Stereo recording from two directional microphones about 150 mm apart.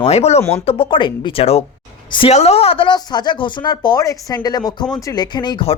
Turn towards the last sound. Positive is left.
turn(degrees=35)  # may be behind; listen again after turning